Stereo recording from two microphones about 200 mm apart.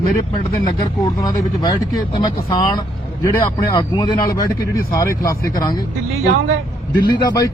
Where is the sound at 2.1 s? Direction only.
20° left (ahead or behind).